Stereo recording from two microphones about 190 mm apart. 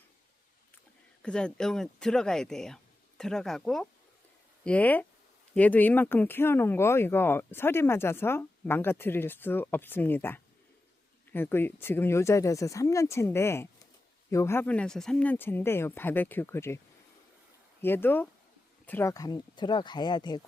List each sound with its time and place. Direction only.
1.2 s speech: 5° left (ahead or behind)
17.8 s speech: 10° left (ahead or behind)